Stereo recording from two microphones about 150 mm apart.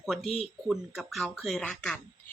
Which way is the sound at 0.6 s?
Centre (ahead or behind).